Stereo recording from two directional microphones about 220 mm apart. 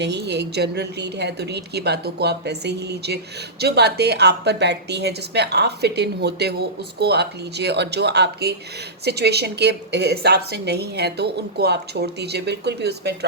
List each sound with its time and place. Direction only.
0.0 s a woman's voice: 50° right (ahead or behind)